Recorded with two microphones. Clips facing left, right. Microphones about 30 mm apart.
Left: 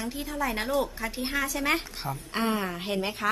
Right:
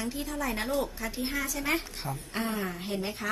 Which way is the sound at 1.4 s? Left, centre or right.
Left.